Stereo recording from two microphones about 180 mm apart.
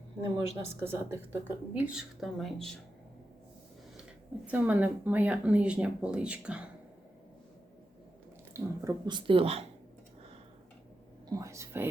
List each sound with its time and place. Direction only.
0.5 s a woman's voice: 15° right (ahead or behind); by 2.7 s centre (ahead or behind)
4.4 s a woman's voice: 10° right (ahead or behind)
8.5 s speech: 15° right (ahead or behind); by 9.6 s 35° right (ahead or behind)
11.3 s a woman's voice: 20° right (ahead or behind)